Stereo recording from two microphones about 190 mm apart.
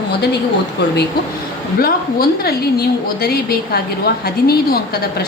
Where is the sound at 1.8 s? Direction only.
50° left (ahead or behind).